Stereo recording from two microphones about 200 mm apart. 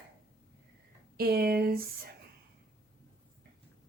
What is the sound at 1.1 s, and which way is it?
Speech, 50° right (ahead or behind).